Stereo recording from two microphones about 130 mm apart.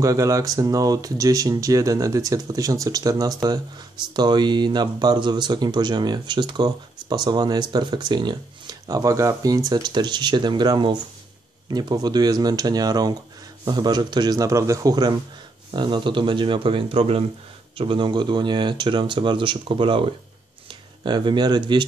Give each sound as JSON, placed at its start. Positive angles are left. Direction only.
{"t": 0.0, "sound": "speech", "side_deg": -25}